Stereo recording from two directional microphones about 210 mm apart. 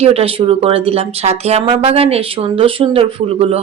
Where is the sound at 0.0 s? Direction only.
30° right (ahead or behind).